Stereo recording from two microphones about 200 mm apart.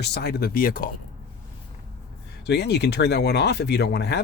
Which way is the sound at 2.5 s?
55° left (ahead or behind).